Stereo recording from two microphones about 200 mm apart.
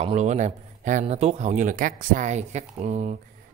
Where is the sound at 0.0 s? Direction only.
35° right (ahead or behind).